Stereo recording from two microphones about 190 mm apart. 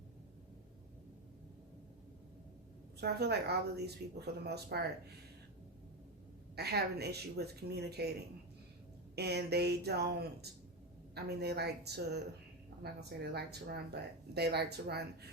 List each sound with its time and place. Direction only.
3.0 s speech: 60° right (ahead or behind)
6.6 s speech: 60° right (ahead or behind)
9.1 s speech: 60° right (ahead or behind)